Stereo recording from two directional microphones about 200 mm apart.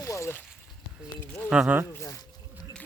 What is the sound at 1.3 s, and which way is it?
Speech, 5° right (ahead or behind).